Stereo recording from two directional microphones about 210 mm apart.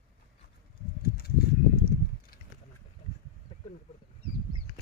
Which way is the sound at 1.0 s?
50° left (ahead or behind).